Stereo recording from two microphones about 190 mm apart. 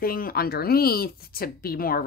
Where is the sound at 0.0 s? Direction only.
50° left (ahead or behind).